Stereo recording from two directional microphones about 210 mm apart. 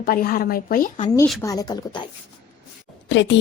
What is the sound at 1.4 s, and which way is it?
Speech, 15° left (ahead or behind).